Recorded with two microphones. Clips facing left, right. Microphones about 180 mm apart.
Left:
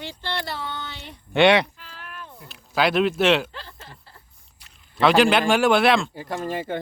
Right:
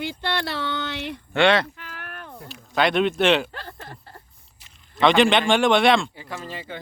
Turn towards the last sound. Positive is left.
turn(degrees=50)  # may be behind; listen again after turning